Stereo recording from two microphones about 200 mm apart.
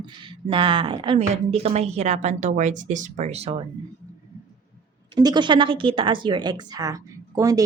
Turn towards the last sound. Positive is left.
turn(degrees=-15)  # may be behind; listen again after turning